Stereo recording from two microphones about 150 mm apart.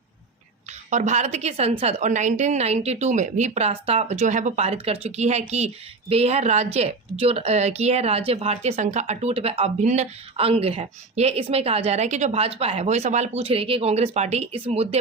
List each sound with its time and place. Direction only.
0.9 s a woman's voice: 50° right (ahead or behind)